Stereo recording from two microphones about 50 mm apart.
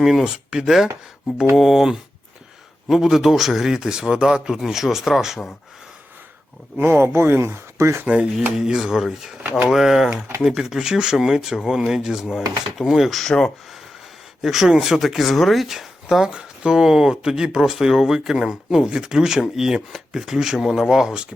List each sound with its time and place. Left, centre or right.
0.0 s speech: centre
6.7 s speech: right
8.0 s speech: right
8.5 s speech: centre
14.4 s speech: centre
16.2 s speech: centre